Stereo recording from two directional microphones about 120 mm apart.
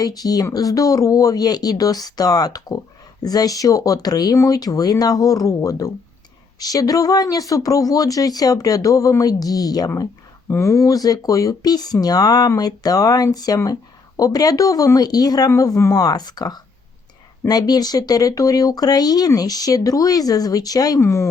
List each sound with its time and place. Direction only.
0.0 s speech: 30° left (ahead or behind)